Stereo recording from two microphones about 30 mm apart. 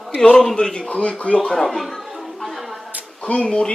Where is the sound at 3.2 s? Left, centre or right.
Left.